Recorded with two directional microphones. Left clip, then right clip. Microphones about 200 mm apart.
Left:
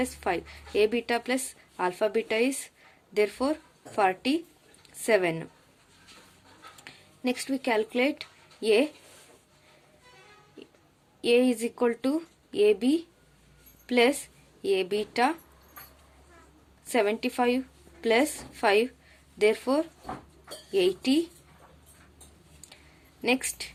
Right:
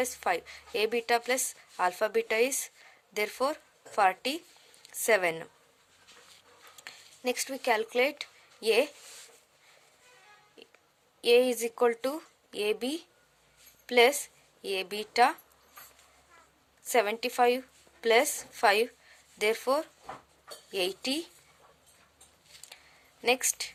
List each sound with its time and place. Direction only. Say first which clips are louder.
0.0 s speech: even; 35° right (ahead or behind)
6.8 s speech: left 1 dB; 35° right (ahead or behind)
11.2 s speech: even; 35° right (ahead or behind)
16.8 s speech: left 1 dB; 35° right (ahead or behind)
23.2 s speech: even; 35° right (ahead or behind)